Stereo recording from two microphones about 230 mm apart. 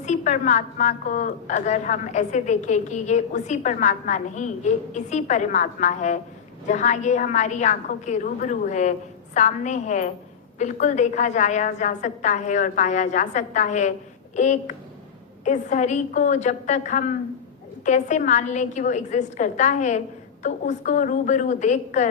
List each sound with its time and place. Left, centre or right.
0.0 s a woman's voice: left